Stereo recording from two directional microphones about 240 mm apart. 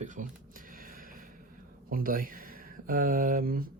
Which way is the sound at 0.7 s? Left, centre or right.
Right.